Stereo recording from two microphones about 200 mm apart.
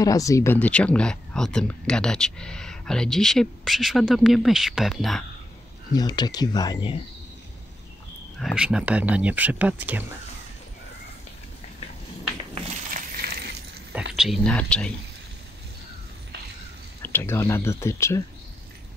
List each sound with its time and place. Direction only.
0.0 s speech: 15° left (ahead or behind); by 5.2 s centre (ahead or behind)
5.9 s speech: 20° left (ahead or behind)
8.4 s speech: centre (ahead or behind)
12.9 s coin: 50° right (ahead or behind)
14.1 s speech: centre (ahead or behind)
17.0 s speech: 10° left (ahead or behind)